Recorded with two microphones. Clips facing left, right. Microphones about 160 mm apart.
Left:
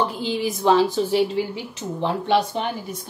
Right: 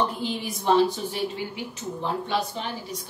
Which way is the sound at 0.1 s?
90° left.